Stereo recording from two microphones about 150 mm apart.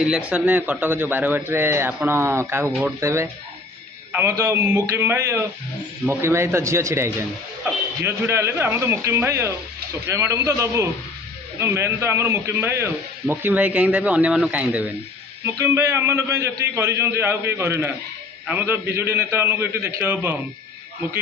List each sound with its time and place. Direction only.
0.0 s a man's voice: 5° right (ahead or behind)